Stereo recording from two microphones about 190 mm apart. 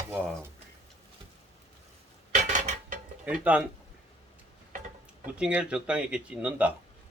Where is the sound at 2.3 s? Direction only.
40° right (ahead or behind).